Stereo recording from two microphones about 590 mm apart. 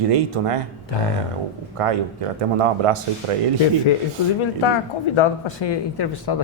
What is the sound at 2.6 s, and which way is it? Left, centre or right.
Speech, right.